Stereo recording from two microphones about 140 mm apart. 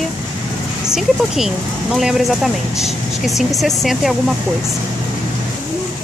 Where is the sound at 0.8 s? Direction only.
5° right (ahead or behind).